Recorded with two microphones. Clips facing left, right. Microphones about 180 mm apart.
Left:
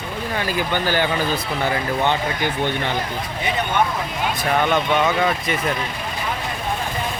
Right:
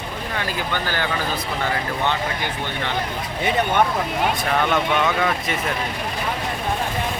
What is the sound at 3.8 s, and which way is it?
Speech, 55° right (ahead or behind).